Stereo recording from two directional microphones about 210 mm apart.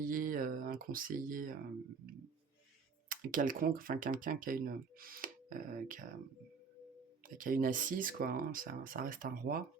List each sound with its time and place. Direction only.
0.1 s speech: 40° right (ahead or behind)
3.1 s speech: 40° right (ahead or behind)
7.3 s speech: 40° right (ahead or behind)